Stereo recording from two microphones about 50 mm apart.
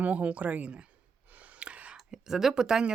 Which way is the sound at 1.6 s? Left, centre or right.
Right.